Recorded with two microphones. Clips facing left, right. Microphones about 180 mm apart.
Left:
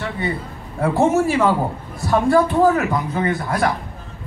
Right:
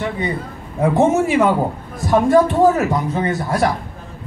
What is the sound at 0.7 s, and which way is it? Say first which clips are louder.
A man's voice: right 2 dB; 20° right (ahead or behind).